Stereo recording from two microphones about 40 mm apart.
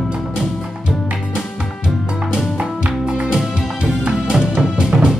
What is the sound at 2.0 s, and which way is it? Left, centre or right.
Music, centre.